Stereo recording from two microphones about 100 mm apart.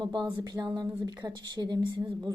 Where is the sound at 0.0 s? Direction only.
45° right (ahead or behind).